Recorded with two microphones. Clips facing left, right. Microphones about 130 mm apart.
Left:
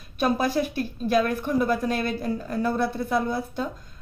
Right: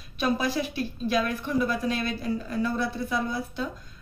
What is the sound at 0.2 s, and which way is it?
Speech, 50° left (ahead or behind).